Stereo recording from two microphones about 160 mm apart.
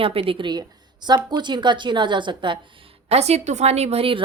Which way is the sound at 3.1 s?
40° right (ahead or behind).